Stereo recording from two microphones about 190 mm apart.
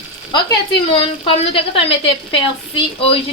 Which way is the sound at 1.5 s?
30° left (ahead or behind).